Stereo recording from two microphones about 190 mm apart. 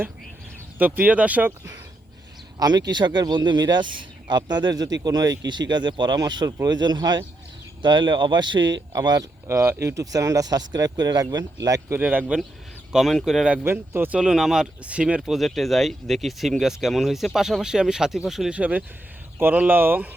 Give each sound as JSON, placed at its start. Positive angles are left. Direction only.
{"t": 0.8, "sound": "speech", "side_deg": -10}